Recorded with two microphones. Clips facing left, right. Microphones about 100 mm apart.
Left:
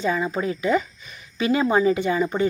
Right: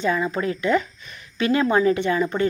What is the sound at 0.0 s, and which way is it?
A woman's voice, 5° left (ahead or behind).